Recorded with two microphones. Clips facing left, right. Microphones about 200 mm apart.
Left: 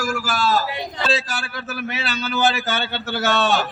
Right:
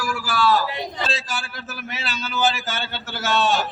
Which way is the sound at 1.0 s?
65° left (ahead or behind).